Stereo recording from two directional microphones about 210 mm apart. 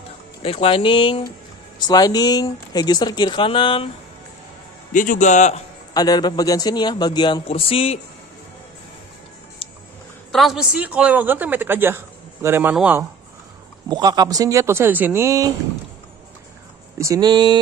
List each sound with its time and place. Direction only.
0.4 s speech: 25° left (ahead or behind)
4.9 s a man's voice: 40° left (ahead or behind)
5.9 s speech: 20° left (ahead or behind)
10.3 s a man's voice: centre (ahead or behind)
13.8 s a man's voice: 20° right (ahead or behind)
17.0 s speech: 20° right (ahead or behind)